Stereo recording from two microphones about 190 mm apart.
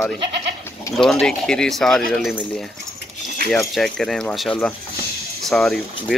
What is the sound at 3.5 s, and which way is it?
Speech, centre (ahead or behind).